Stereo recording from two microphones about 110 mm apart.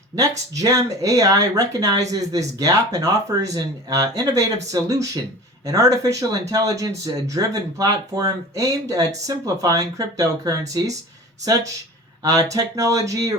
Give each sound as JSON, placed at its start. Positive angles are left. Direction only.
{"t": 0.2, "sound": "speech", "side_deg": -30}
{"t": 12.2, "sound": "speech", "side_deg": -30}